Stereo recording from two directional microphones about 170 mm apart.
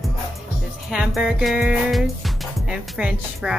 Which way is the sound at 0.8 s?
5° right (ahead or behind).